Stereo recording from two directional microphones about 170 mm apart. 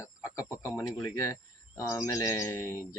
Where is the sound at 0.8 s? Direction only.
15° left (ahead or behind).